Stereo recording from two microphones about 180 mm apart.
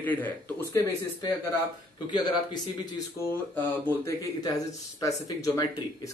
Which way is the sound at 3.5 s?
10° left (ahead or behind).